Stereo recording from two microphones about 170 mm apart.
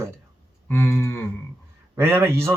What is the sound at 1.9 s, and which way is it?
Speech, 15° right (ahead or behind).